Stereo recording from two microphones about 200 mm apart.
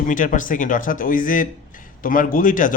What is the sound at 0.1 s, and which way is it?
A man's voice, 40° left (ahead or behind).